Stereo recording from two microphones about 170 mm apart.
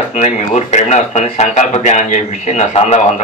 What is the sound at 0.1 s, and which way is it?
A man's voice, 40° left (ahead or behind).